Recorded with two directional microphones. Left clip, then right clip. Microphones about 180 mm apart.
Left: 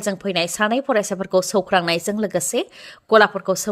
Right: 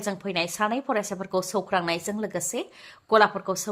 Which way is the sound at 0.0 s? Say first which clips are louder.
Left 6 dB; 30° left (ahead or behind).